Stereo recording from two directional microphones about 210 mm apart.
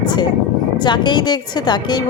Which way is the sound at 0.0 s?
20° left (ahead or behind).